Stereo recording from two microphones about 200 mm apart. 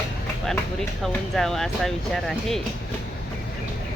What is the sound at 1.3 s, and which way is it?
Speech, centre (ahead or behind).